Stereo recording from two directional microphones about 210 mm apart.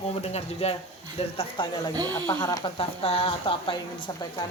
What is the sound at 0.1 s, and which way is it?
Speech, 30° left (ahead or behind).